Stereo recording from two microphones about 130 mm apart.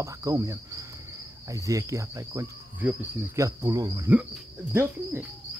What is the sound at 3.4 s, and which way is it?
Cricket, 25° right (ahead or behind).